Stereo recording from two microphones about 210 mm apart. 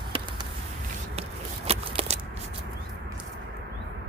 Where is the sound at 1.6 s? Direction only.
30° right (ahead or behind).